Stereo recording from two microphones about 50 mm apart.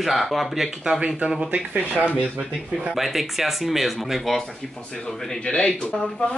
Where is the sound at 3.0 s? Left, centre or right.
Centre.